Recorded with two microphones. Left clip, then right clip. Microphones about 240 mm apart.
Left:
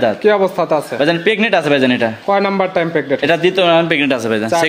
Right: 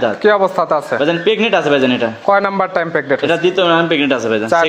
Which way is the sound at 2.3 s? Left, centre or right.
Centre.